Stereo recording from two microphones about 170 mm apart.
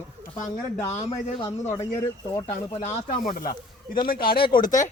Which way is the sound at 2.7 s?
45° left (ahead or behind).